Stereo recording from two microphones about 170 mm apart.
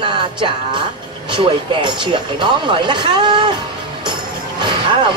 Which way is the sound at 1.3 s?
30° right (ahead or behind).